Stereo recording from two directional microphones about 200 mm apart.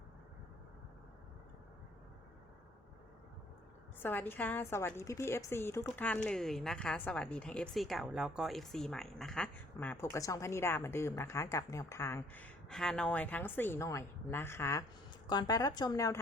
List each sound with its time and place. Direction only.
4.0 s a woman's voice: 10° left (ahead or behind)